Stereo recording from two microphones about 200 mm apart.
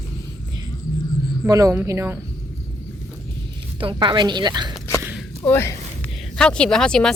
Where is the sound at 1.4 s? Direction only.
15° right (ahead or behind).